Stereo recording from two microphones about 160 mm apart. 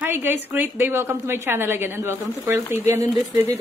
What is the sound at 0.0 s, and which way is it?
A woman's voice, 15° right (ahead or behind).